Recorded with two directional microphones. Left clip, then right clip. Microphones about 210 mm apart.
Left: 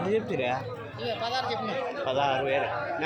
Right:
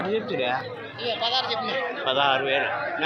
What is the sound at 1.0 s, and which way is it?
Speech, 55° left (ahead or behind).